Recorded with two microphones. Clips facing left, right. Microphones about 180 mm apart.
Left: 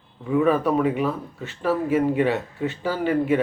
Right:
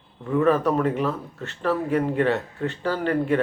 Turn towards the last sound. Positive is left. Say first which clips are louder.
# left 1 dB
turn(degrees=5)  # may be behind; listen again after turning